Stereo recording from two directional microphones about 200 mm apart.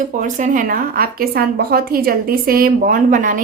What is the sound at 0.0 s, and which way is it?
Speech, 40° right (ahead or behind).